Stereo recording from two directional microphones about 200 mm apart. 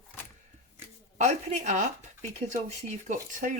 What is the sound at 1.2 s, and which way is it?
Speech, 35° right (ahead or behind).